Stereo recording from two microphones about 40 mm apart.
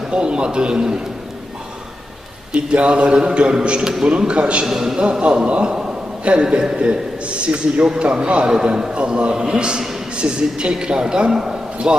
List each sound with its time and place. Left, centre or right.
0.1 s a man's voice: right
2.5 s a man's voice: right
4.6 s a man's voice: centre
5.2 s a man's voice: right